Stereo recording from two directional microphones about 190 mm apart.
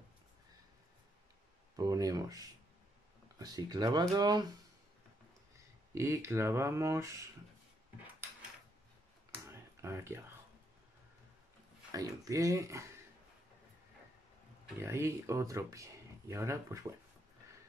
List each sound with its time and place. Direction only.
1.8 s speech: 20° right (ahead or behind)
5.9 s speech: 15° right (ahead or behind)
9.5 s a sound: 15° right (ahead or behind)
11.9 s speech: 15° right (ahead or behind)
14.8 s speech: 15° right (ahead or behind)